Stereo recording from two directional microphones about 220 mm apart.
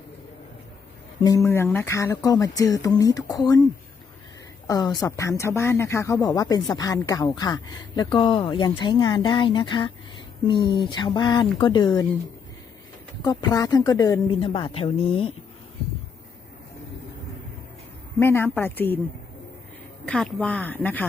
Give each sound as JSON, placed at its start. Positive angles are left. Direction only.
{"t": 1.2, "sound": "speech", "side_deg": 15}
{"t": 13.2, "sound": "speech", "side_deg": 15}
{"t": 18.2, "sound": "speech", "side_deg": 10}
{"t": 20.1, "sound": "speech", "side_deg": 5}